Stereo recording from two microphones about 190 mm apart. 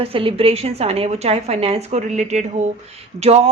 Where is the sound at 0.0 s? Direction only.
30° right (ahead or behind).